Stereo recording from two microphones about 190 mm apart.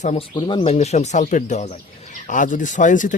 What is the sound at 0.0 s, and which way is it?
Speech, 30° left (ahead or behind).